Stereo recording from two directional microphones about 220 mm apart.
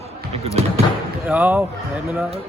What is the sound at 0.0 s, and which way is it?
Basketball bounce, 30° right (ahead or behind).